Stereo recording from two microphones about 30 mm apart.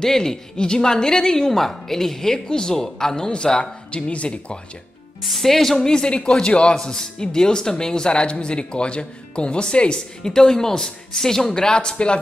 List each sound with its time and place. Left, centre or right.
0.0 s a woman's voice: centre
3.9 s speech: left
5.2 s speech: centre
5.9 s speech: left
6.7 s speech: left
10.2 s a woman's voice: centre
11.7 s speech: left